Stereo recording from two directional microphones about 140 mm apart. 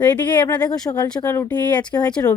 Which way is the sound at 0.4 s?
25° left (ahead or behind).